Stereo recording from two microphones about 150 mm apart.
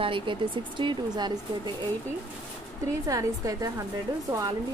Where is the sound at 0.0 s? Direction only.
35° right (ahead or behind).